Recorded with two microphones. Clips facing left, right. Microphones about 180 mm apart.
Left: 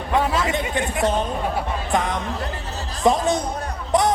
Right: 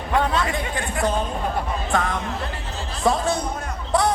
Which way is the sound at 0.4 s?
20° left (ahead or behind).